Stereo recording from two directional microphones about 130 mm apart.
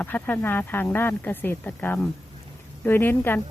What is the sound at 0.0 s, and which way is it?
Speech, 15° left (ahead or behind).